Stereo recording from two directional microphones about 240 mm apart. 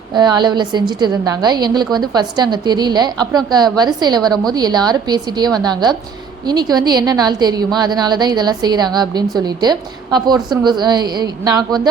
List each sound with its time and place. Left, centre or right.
0.1 s a woman's voice: centre